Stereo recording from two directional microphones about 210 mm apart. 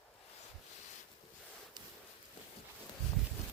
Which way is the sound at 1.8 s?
20° right (ahead or behind).